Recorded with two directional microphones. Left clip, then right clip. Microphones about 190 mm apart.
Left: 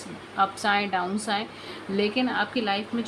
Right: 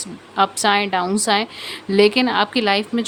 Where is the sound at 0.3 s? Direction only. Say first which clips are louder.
Right 7 dB; 40° right (ahead or behind).